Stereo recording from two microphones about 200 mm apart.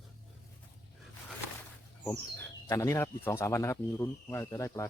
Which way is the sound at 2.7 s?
15° left (ahead or behind).